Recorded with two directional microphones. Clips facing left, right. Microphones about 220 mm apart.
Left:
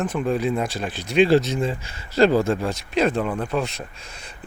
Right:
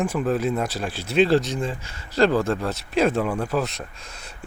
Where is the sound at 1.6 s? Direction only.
15° left (ahead or behind).